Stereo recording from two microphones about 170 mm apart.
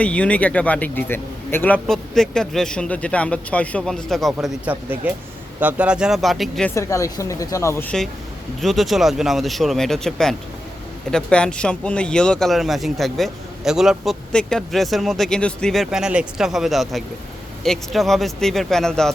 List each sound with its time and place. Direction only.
0.0 s a man's voice: 10° left (ahead or behind)
6.7 s a man's voice: 15° left (ahead or behind)